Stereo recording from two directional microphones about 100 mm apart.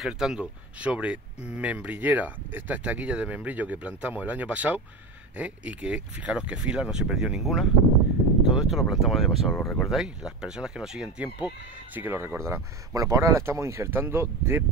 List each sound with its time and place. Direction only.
0.0 s speech: 5° right (ahead or behind); by 14.6 s 25° right (ahead or behind)